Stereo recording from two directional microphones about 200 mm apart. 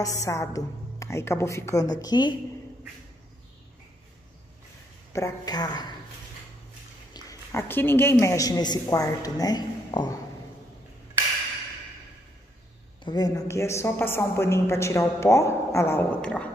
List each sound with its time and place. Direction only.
0.0 s a woman's voice: 15° left (ahead or behind)
5.1 s speech: 15° left (ahead or behind)
7.2 s a woman's voice: 15° left (ahead or behind)
13.0 s a woman's voice: 20° left (ahead or behind)